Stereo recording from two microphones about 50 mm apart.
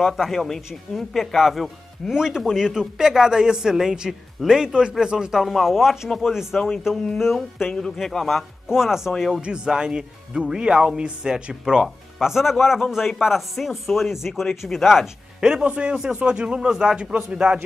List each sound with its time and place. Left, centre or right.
0.0 s speech: centre
5.4 s speech: centre
7.7 s speech: centre
8.6 s speech: centre
15.4 s a man's voice: centre